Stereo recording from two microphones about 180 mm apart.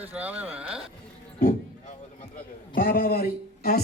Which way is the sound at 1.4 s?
50° left (ahead or behind).